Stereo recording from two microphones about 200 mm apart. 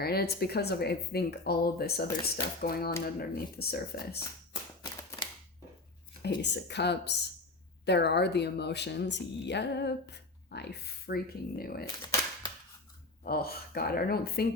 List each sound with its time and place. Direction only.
0.0 s speech: 50° left (ahead or behind)
6.4 s speech: 60° left (ahead or behind)
12.0 s cap gun: 20° left (ahead or behind)
13.2 s speech: 50° left (ahead or behind)